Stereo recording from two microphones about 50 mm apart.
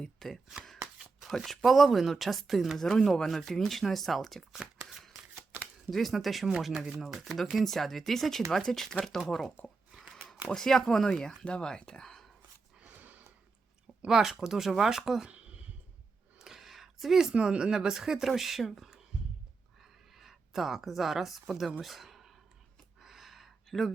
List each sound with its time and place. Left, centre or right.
0.0 s speech: centre
0.9 s shuffling cards: centre
1.5 s speech: centre
4.9 s shuffling cards: centre
5.9 s speech: centre
10.0 s a sound: centre
10.5 s speech: centre
12.9 s a sound: right
14.1 s speech: centre
15.3 s clicking: right
16.4 s a sound: centre
17.3 s speech: centre
19.8 s a sound: centre